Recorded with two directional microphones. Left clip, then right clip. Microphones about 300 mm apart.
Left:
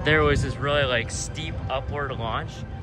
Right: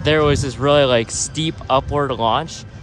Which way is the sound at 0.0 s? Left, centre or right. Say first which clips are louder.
Right 5 dB; centre.